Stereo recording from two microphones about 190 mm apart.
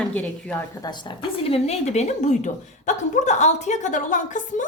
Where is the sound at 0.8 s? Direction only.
25° left (ahead or behind).